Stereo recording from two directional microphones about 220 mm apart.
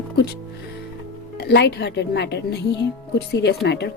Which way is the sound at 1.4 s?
50° left (ahead or behind).